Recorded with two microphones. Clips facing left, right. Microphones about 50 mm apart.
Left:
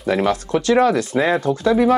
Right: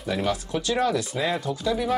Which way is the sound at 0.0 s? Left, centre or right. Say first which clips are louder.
Left 8 dB; left.